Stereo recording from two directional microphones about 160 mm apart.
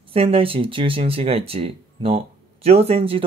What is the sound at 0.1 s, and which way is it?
Speech, 35° right (ahead or behind).